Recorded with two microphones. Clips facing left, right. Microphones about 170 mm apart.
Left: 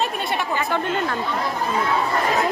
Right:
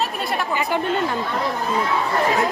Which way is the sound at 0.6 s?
15° right (ahead or behind).